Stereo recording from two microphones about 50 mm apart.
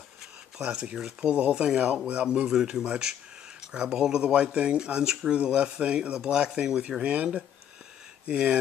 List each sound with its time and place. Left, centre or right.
0.6 s speech: centre
8.3 s speech: right